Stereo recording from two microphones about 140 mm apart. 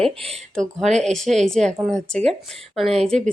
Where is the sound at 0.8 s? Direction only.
5° left (ahead or behind).